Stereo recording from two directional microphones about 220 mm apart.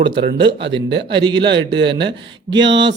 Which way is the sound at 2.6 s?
55° right (ahead or behind).